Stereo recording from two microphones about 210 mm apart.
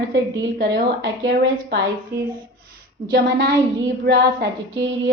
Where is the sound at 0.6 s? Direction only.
55° right (ahead or behind).